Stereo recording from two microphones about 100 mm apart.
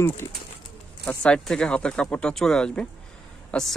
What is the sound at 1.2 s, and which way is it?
Speech, 10° left (ahead or behind).